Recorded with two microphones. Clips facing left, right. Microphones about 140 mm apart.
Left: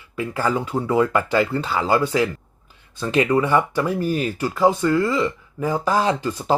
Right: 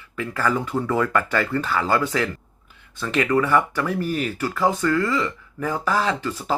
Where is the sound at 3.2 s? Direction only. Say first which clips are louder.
Right 1 dB; 15° left (ahead or behind).